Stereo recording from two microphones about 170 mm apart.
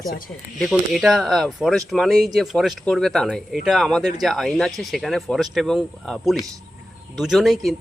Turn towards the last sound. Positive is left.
turn(degrees=0)  # may be behind; listen again after turning